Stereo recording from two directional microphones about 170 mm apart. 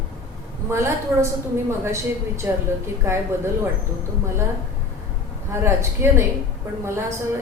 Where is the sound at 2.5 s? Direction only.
10° right (ahead or behind).